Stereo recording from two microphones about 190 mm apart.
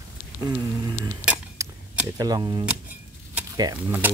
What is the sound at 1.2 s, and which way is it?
Cutlery, 5° right (ahead or behind).